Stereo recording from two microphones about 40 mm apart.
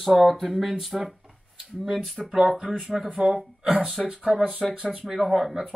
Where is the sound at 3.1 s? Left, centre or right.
Centre.